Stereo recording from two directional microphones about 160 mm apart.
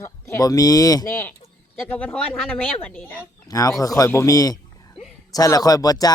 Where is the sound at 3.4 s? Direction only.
20° left (ahead or behind).